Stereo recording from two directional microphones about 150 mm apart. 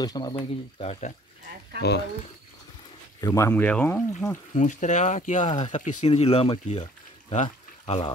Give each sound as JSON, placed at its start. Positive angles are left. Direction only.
{"t": 0.0, "sound": "speech", "side_deg": 25}
{"t": 3.2, "sound": "speech", "side_deg": 20}
{"t": 4.6, "sound": "speech", "side_deg": 55}
{"t": 7.4, "sound": "pour", "side_deg": 35}